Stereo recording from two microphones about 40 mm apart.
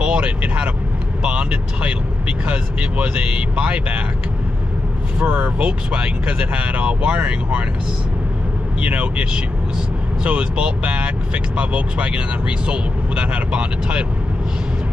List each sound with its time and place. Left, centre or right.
0.0 s speech: right
5.2 s speech: right
5.6 s speech: right
8.8 s speech: right